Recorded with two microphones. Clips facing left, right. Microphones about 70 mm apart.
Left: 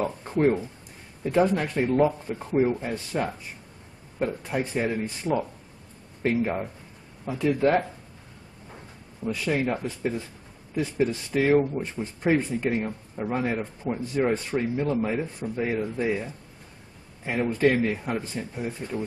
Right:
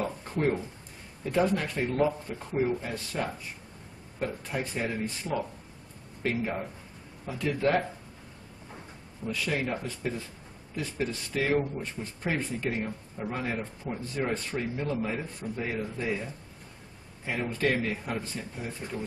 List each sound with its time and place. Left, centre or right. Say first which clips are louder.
0.0 s a sound: left 6 dB; centre
1.2 s speech: left 4 dB; centre
4.5 s speech: left 5 dB; centre
9.2 s speech: left 5 dB; left
17.3 s speech: left 6 dB; centre